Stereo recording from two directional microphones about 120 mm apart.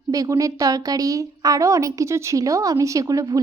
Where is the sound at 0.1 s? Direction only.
30° right (ahead or behind).